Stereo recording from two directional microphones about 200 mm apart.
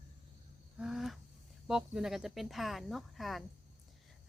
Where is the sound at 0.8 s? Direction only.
Centre (ahead or behind).